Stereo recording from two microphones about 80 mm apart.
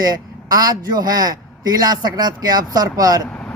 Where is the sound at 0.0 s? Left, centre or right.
Right.